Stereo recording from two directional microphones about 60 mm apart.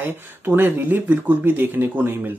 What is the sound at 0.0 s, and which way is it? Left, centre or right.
Speech, right.